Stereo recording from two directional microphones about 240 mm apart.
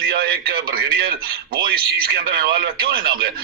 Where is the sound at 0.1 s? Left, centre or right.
Right.